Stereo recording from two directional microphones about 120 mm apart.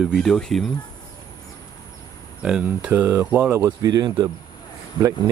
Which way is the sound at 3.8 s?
35° right (ahead or behind).